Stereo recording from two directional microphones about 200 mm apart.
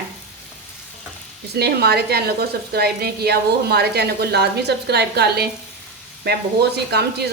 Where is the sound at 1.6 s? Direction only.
55° right (ahead or behind).